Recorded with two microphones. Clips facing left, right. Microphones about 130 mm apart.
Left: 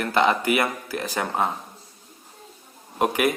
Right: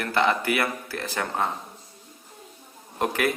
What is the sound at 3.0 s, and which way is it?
Speech, 15° left (ahead or behind).